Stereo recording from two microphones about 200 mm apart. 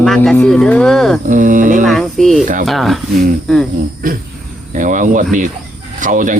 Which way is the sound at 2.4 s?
40° right (ahead or behind).